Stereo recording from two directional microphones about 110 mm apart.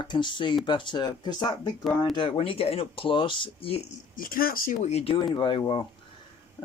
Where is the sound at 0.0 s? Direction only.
45° left (ahead or behind).